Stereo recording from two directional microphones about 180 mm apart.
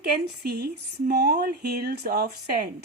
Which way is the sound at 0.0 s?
60° right (ahead or behind).